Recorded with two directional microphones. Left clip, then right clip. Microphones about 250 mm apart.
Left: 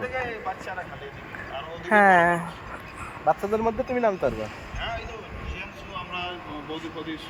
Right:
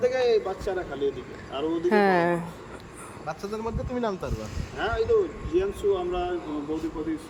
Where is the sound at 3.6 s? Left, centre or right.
Left.